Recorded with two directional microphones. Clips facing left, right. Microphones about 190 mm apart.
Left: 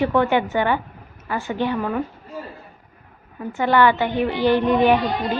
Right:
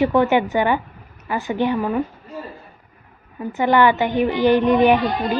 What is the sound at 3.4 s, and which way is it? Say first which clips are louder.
A woman's voice: right 1 dB; 15° right (ahead or behind).